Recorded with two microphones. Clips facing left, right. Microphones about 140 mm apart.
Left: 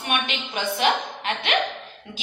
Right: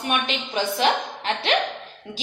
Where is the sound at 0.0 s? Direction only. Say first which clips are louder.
Right 2 dB; 35° right (ahead or behind).